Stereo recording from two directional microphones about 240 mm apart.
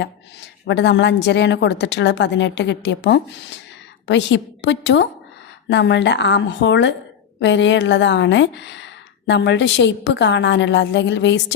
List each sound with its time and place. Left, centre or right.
0.7 s a woman's voice: left